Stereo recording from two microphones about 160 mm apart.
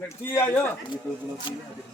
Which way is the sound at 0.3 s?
15° left (ahead or behind).